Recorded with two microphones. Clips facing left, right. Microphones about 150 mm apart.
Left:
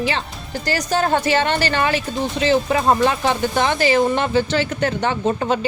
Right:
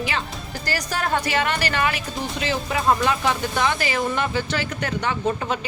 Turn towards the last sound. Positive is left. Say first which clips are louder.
# left 4 dB
turn(degrees=30)  # may be behind; listen again after turning